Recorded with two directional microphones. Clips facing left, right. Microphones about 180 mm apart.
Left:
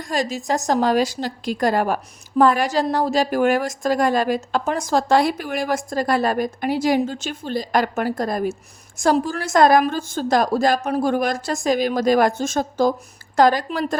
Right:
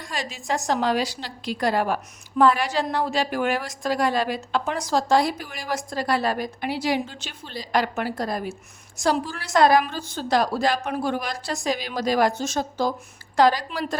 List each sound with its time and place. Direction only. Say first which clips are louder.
0.0 s a woman's voice: left 9 dB; 45° left (ahead or behind)